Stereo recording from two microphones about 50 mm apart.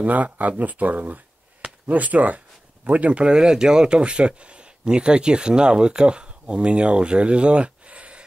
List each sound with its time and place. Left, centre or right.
0.0 s speech: right